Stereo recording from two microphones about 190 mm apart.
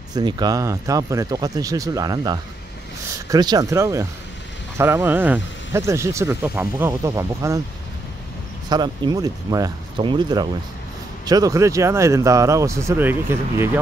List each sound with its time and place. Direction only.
0.1 s speech: 25° right (ahead or behind)
8.6 s speech: 20° right (ahead or behind)